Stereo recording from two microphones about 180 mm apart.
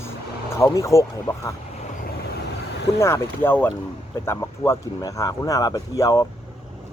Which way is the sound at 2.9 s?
15° left (ahead or behind).